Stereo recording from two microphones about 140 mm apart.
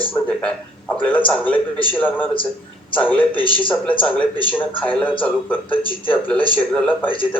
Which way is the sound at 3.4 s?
35° left (ahead or behind).